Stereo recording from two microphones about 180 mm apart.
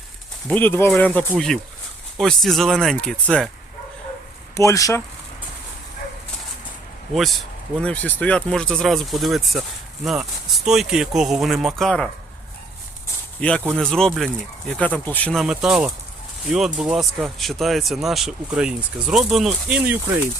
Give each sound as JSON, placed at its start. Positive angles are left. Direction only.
{"t": 0.4, "sound": "speech", "side_deg": 10}
{"t": 4.5, "sound": "speech", "side_deg": 15}
{"t": 7.1, "sound": "speech", "side_deg": 0}
{"t": 13.4, "sound": "speech", "side_deg": 10}